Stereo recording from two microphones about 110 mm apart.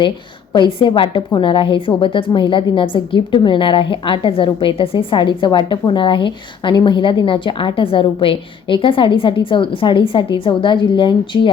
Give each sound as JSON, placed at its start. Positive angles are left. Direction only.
{"t": 0.5, "sound": "a woman's voice", "side_deg": 45}